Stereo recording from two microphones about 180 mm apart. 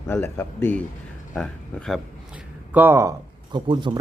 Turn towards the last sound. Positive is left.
turn(degrees=-25)  # may be behind; listen again after turning